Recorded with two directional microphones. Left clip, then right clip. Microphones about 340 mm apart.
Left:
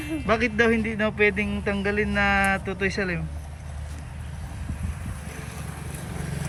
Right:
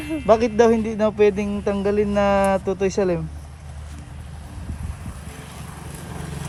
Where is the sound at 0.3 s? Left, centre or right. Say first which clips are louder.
Right 6 dB; centre.